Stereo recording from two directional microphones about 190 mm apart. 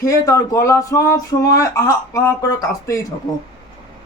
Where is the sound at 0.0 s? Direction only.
15° left (ahead or behind).